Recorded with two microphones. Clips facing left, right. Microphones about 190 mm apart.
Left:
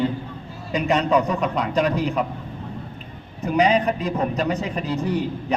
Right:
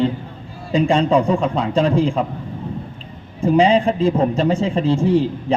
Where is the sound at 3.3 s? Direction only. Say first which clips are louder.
Right 5 dB; 25° right (ahead or behind).